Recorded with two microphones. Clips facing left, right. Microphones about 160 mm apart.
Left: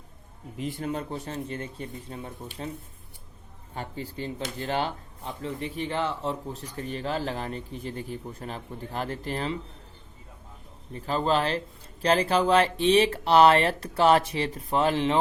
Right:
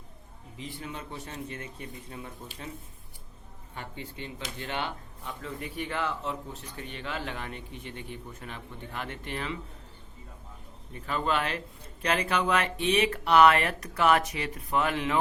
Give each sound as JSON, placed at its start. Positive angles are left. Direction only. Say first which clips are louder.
{"t": 0.5, "sound": "speech", "louder": "left 8 dB", "side_deg": 50}
{"t": 3.8, "sound": "speech", "louder": "left 6 dB", "side_deg": 35}
{"t": 10.9, "sound": "speech", "louder": "left 4 dB", "side_deg": 35}